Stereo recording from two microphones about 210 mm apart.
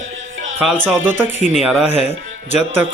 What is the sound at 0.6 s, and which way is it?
Speech, 5° right (ahead or behind).